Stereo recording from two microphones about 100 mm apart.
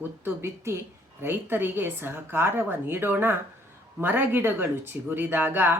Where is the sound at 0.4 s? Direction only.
30° right (ahead or behind).